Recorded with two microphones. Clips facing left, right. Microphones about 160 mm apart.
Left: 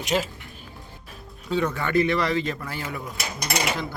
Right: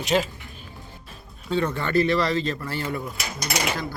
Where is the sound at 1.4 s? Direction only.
5° left (ahead or behind).